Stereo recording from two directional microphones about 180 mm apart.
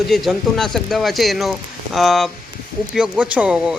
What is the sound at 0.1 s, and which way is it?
Speech, centre (ahead or behind).